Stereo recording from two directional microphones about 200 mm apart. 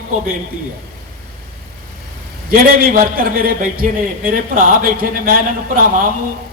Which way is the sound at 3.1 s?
45° right (ahead or behind).